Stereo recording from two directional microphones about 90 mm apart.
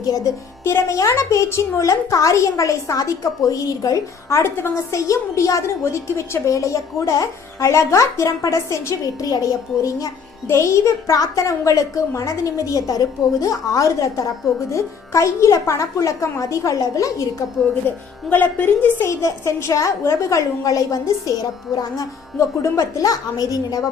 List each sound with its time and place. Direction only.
0.0 s a woman's voice: 40° left (ahead or behind)
0.6 s a woman's voice: 30° left (ahead or behind)
17.8 s speech: 20° left (ahead or behind)
18.9 s a woman's voice: 30° left (ahead or behind)
22.4 s a woman's voice: 35° left (ahead or behind)